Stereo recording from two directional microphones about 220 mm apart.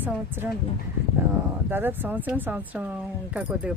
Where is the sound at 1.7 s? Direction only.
10° right (ahead or behind).